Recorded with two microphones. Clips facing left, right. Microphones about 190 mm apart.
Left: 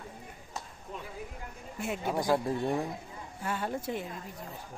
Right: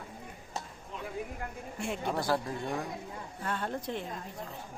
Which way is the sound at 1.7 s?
5° left (ahead or behind).